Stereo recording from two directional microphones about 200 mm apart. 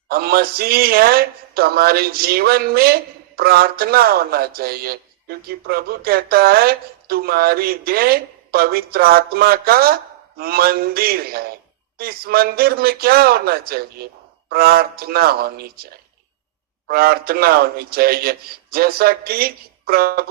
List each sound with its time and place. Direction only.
0.1 s speech: 50° right (ahead or behind)